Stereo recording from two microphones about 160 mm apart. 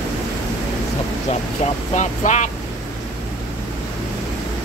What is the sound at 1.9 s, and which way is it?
Speech, 50° left (ahead or behind).